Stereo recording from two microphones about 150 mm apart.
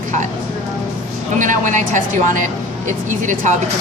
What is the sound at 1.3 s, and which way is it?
Speech, 60° right (ahead or behind).